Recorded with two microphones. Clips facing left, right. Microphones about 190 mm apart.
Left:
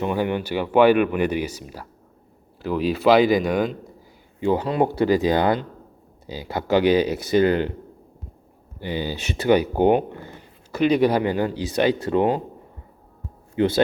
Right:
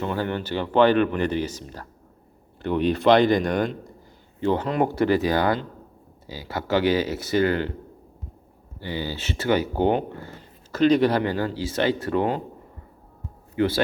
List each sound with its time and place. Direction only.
0.0 s speech: 15° left (ahead or behind)
8.8 s speech: 15° left (ahead or behind)
13.6 s speech: 20° left (ahead or behind)